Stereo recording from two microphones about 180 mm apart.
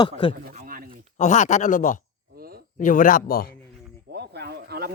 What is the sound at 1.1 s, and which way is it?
Speech, 40° left (ahead or behind).